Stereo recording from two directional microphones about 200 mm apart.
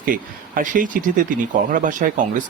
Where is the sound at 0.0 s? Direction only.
45° right (ahead or behind).